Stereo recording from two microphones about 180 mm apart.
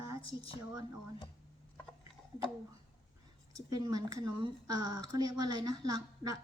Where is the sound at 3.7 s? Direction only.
20° right (ahead or behind).